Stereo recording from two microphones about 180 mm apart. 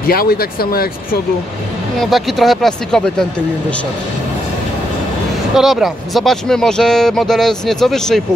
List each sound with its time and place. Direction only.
0.0 s speech: 55° left (ahead or behind)
2.0 s speech: centre (ahead or behind)
5.5 s speech: centre (ahead or behind)